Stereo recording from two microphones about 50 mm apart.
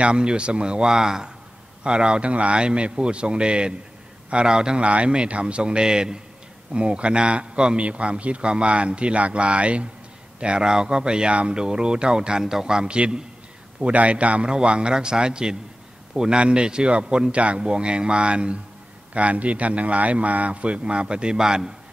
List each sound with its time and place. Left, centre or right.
0.0 s a man's voice: centre